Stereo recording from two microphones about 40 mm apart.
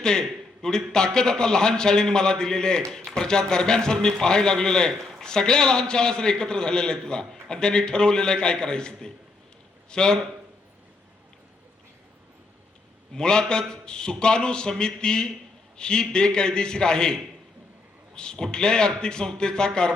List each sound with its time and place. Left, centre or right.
0.0 s a man's voice: centre
13.1 s a man's voice: centre